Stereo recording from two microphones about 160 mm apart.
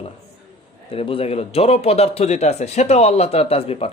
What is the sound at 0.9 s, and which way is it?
Speech, 35° left (ahead or behind).